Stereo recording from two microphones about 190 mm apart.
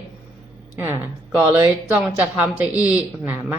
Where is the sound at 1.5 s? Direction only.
15° right (ahead or behind).